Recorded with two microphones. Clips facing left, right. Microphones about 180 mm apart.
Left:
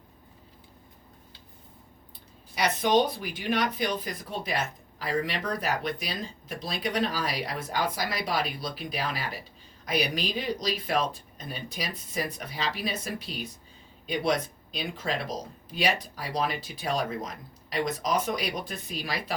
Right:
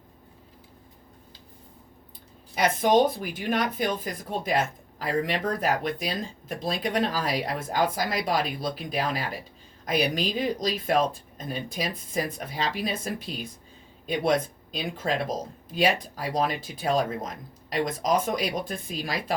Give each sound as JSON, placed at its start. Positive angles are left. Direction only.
{"t": 2.6, "sound": "speech", "side_deg": -50}